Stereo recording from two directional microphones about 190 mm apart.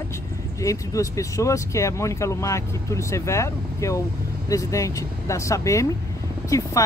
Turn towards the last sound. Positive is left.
turn(degrees=15)  # may be behind; listen again after turning